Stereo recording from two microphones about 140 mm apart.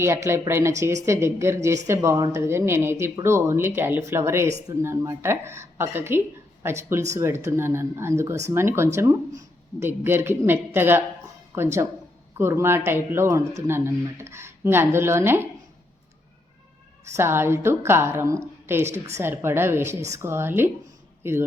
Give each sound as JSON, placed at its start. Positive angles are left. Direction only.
{"t": 0.0, "sound": "speech", "side_deg": -20}
{"t": 17.2, "sound": "speech", "side_deg": -15}